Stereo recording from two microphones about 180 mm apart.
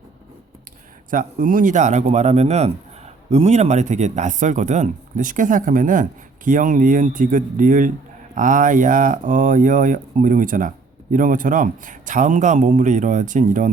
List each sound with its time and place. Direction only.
1.1 s a man's voice: 50° right (ahead or behind)